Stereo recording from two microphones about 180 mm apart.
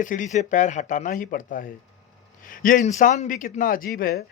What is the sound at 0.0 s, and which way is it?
Speech, 45° left (ahead or behind).